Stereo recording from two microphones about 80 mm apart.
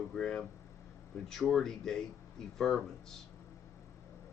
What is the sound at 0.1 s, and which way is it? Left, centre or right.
Speech, centre.